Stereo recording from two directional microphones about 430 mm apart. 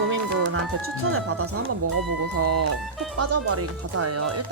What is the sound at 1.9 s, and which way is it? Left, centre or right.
Speech, right.